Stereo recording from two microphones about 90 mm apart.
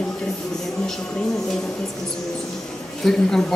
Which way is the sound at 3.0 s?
5° left (ahead or behind).